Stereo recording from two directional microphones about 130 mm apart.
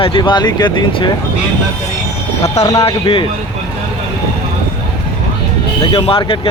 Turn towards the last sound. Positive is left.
turn(degrees=45)  # may be behind; listen again after turning